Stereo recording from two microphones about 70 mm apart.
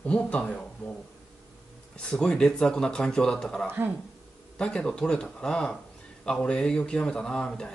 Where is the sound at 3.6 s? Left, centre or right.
Right.